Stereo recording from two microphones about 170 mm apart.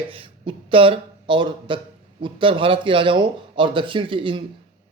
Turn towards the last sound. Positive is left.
turn(degrees=-30)  # may be behind; listen again after turning